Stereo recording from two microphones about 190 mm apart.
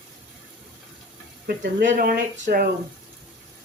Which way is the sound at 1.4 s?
65° right (ahead or behind).